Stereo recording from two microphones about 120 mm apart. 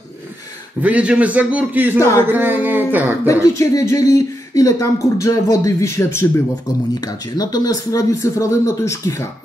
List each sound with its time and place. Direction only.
0.8 s a man's voice: 10° right (ahead or behind)
2.0 s speech: 25° left (ahead or behind)
2.2 s a man's voice: 15° right (ahead or behind)
3.3 s speech: 25° left (ahead or behind)
7.0 s speech: 30° left (ahead or behind)